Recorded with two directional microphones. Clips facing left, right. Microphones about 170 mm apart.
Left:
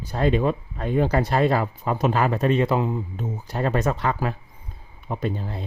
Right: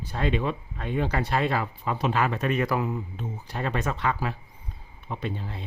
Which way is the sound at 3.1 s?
40° left (ahead or behind).